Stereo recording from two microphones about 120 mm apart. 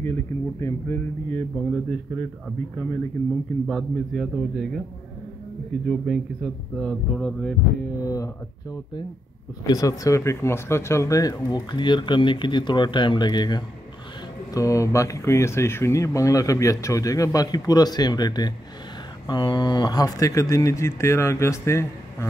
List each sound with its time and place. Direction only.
0.0 s speech: 20° left (ahead or behind)
1.5 s speech: 5° left (ahead or behind)
3.6 s speech: centre (ahead or behind)
5.9 s speech: centre (ahead or behind)
8.0 s speech: 30° left (ahead or behind)
9.7 s speech: 30° left (ahead or behind)
11.5 s speech: 40° left (ahead or behind); by 21.8 s 25° left (ahead or behind)